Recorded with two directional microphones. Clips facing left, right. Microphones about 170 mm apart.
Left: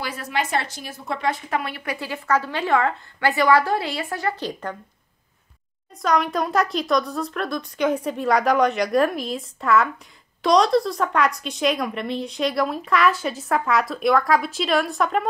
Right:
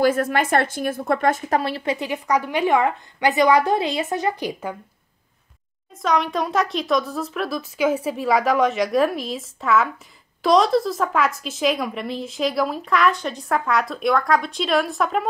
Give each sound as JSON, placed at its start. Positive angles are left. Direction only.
{"t": 0.0, "sound": "a woman's voice", "side_deg": -50}
{"t": 1.6, "sound": "a woman's voice", "side_deg": -30}
{"t": 6.0, "sound": "speech", "side_deg": 0}